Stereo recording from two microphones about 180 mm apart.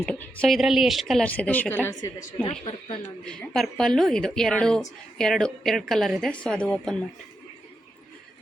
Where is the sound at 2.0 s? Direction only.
30° left (ahead or behind).